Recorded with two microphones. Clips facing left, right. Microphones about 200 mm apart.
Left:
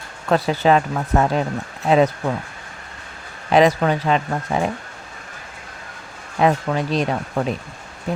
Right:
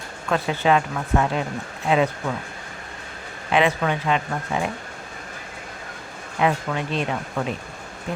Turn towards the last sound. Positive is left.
turn(degrees=40)  # may be behind; listen again after turning